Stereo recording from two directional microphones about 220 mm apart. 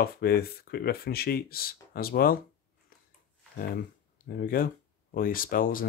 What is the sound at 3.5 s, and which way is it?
Speech, 45° left (ahead or behind).